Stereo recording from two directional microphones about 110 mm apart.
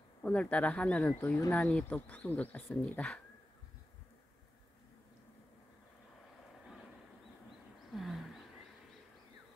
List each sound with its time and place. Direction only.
0.2 s speech: 10° left (ahead or behind)
1.2 s speech: 25° left (ahead or behind)
1.5 s speech: 10° left (ahead or behind)
6.6 s a sound: centre (ahead or behind)
7.9 s roaring cats: centre (ahead or behind)